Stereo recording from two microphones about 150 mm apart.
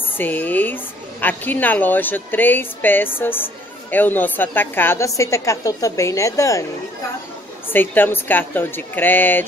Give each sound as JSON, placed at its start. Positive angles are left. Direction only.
{"t": 0.2, "sound": "a woman's voice", "side_deg": 10}
{"t": 7.7, "sound": "speech", "side_deg": 15}